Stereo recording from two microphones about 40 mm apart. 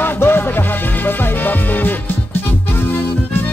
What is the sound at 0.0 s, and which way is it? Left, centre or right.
Music, left.